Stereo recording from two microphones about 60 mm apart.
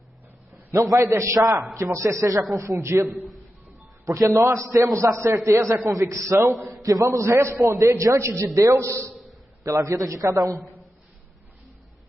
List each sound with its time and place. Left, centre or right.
0.7 s a man's voice: right
6.5 s a man's voice: centre
6.8 s a man's voice: right
7.1 s a man's voice: right
9.6 s a man's voice: right